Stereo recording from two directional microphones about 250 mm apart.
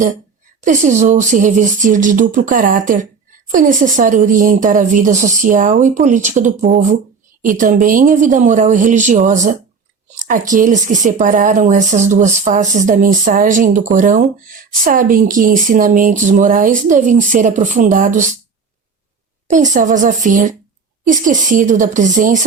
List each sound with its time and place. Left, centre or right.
0.6 s speech: right
19.5 s speech: right